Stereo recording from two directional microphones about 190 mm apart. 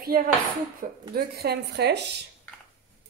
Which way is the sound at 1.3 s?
60° right (ahead or behind).